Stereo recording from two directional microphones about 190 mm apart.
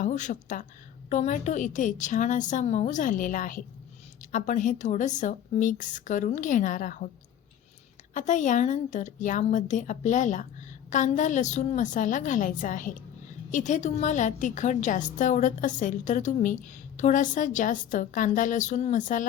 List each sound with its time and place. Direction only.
0.0 s a woman's voice: 40° left (ahead or behind)
8.1 s a woman's voice: 40° left (ahead or behind)